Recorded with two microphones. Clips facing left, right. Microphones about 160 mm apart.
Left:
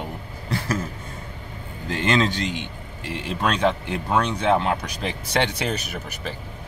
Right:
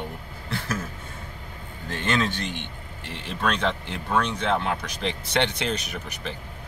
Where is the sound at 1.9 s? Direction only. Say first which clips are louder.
Left 4 dB; 15° left (ahead or behind).